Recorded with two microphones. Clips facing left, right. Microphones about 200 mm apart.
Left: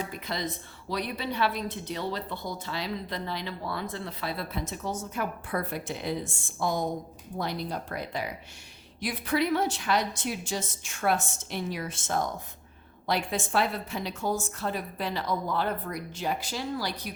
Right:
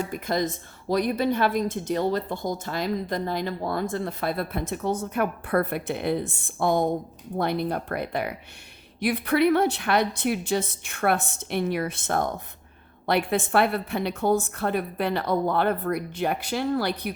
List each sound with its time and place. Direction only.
0.1 s a woman's voice: 45° right (ahead or behind)